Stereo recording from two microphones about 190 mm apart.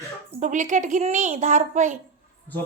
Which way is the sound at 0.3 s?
40° right (ahead or behind).